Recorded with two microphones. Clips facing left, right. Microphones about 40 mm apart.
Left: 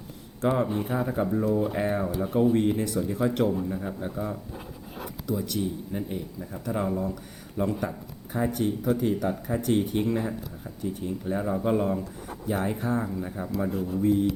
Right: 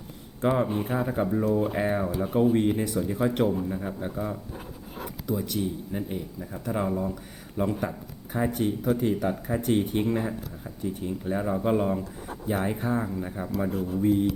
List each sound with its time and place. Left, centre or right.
0.4 s speech: centre
5.5 s speech: centre